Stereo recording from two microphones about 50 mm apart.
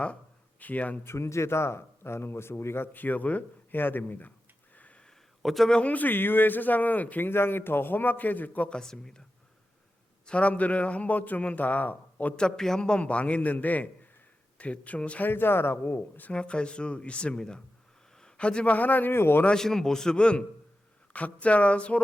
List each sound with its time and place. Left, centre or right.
0.6 s a man's voice: left
1.0 s a man's voice: left
5.4 s a man's voice: centre
5.8 s a man's voice: left
7.3 s a man's voice: left
8.7 s a man's voice: centre
10.2 s a man's voice: left
12.4 s a man's voice: centre
15.2 s a man's voice: left
16.3 s a man's voice: left
19.1 s a man's voice: left
19.5 s a man's voice: centre